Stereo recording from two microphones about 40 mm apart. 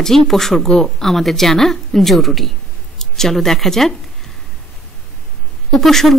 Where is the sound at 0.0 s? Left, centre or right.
Centre.